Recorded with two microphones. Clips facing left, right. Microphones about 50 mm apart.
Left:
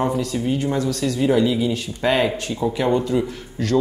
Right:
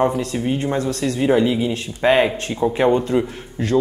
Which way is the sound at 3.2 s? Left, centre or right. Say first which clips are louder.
Right 1 dB; right.